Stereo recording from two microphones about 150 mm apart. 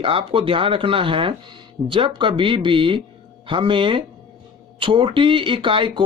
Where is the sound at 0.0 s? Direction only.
35° right (ahead or behind).